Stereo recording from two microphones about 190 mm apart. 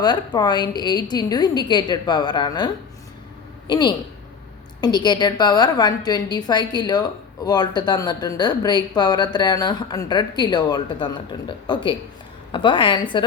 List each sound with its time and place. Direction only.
0.0 s speech: 20° left (ahead or behind)
3.7 s speech: 25° left (ahead or behind)